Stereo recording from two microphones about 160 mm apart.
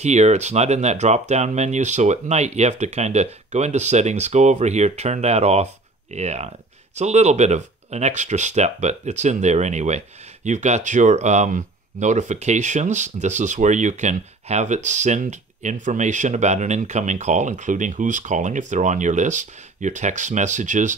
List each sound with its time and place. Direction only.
0.0 s speech: 45° right (ahead or behind)